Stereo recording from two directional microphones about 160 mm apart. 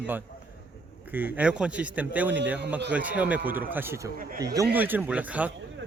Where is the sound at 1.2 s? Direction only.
10° right (ahead or behind).